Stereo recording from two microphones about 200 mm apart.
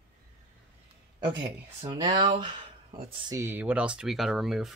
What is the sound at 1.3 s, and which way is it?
Speech, 20° right (ahead or behind).